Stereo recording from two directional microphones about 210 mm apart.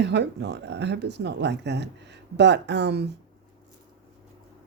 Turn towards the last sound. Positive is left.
turn(degrees=-55)  # may be behind; listen again after turning